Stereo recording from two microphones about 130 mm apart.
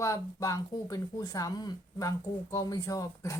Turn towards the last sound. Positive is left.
turn(degrees=25)  # may be behind; listen again after turning